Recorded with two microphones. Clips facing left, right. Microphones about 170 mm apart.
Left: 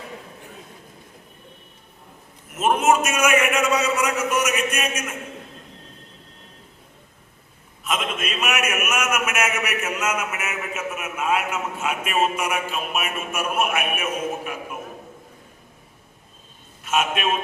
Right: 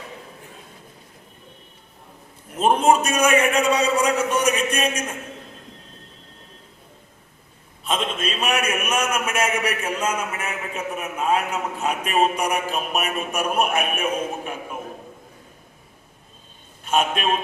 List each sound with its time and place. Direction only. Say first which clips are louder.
2.5 s a man's voice: right 2 dB; 30° right (ahead or behind)
7.9 s a man's voice: right 2 dB; 30° right (ahead or behind)
16.8 s a man's voice: right 1 dB; 35° right (ahead or behind)